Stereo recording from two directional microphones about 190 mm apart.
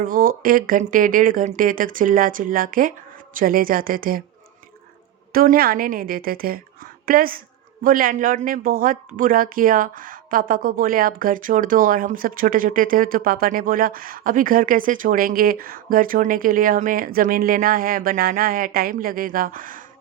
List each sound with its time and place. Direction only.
0.0 s speech: 45° right (ahead or behind)
5.3 s a woman's voice: 50° right (ahead or behind)